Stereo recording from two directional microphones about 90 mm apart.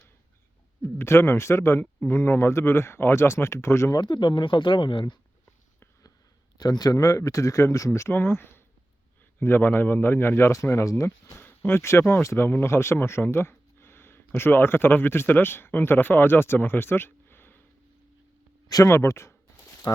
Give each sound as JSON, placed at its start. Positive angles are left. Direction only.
{"t": 0.8, "sound": "speech", "side_deg": 30}
{"t": 1.8, "sound": "speech", "side_deg": 20}
{"t": 2.1, "sound": "a man's voice", "side_deg": 30}
{"t": 3.9, "sound": "speech", "side_deg": 55}
{"t": 6.6, "sound": "a man's voice", "side_deg": 45}
{"t": 11.3, "sound": "speech", "side_deg": 25}
{"t": 18.7, "sound": "speech", "side_deg": 35}